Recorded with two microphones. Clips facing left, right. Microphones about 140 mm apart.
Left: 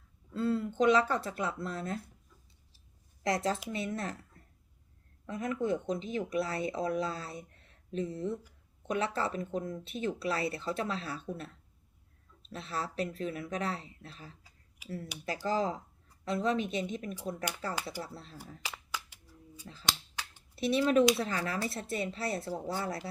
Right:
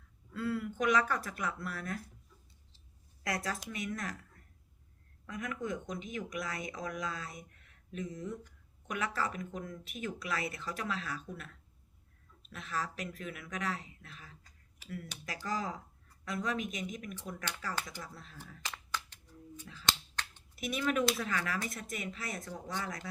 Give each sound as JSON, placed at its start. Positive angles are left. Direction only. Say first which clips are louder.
{"t": 0.3, "sound": "speech", "louder": "left 5 dB", "side_deg": 25}
{"t": 3.2, "sound": "speech", "louder": "left 6 dB", "side_deg": 25}
{"t": 18.6, "sound": "a sound", "louder": "right 2 dB", "side_deg": 10}
{"t": 20.6, "sound": "speech", "louder": "left 7 dB", "side_deg": 30}